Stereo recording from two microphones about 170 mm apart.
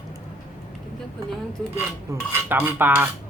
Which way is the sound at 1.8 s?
10° right (ahead or behind).